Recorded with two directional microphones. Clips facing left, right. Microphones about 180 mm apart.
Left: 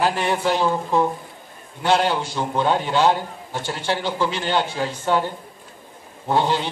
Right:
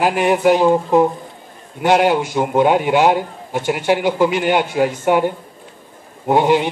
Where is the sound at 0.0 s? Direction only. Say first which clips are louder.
Right 6 dB; 15° right (ahead or behind).